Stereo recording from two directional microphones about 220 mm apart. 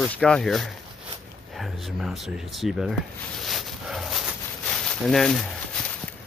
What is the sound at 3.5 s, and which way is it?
Dog, centre (ahead or behind).